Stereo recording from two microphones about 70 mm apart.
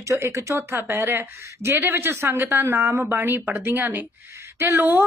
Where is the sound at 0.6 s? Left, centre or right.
Right.